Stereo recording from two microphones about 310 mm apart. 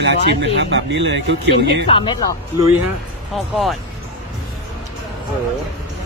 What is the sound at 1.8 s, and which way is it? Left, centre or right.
Speech, centre.